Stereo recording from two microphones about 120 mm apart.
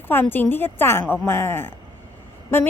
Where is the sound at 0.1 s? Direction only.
15° left (ahead or behind).